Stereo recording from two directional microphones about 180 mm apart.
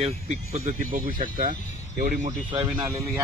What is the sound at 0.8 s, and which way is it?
Speech, 50° right (ahead or behind).